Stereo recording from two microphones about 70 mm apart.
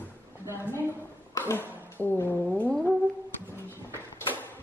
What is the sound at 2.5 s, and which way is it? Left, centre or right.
Brass instrument, left.